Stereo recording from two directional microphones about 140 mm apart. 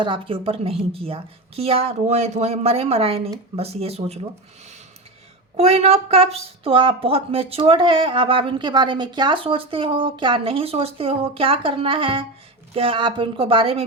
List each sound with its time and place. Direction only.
0.0 s a woman's voice: 40° right (ahead or behind)
5.5 s a woman's voice: 50° right (ahead or behind)